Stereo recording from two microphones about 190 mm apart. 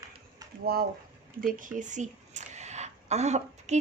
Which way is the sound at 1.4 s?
45° right (ahead or behind).